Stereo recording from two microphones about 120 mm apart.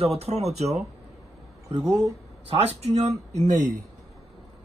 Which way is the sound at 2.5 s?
60° right (ahead or behind).